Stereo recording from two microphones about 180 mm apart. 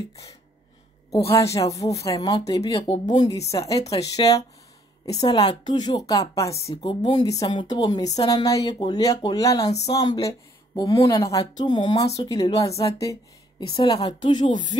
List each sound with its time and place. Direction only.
0.1 s a woman's voice: 20° left (ahead or behind)
6.7 s speech: 35° left (ahead or behind)